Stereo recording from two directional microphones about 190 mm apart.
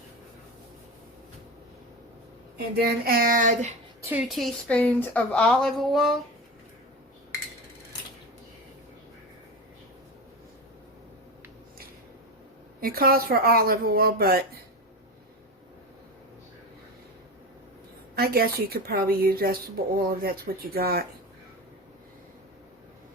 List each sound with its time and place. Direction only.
2.8 s a woman's voice: 50° right (ahead or behind)
4.0 s speech: 10° right (ahead or behind)
12.8 s a woman's voice: 50° right (ahead or behind)
18.1 s a woman's voice: 55° right (ahead or behind)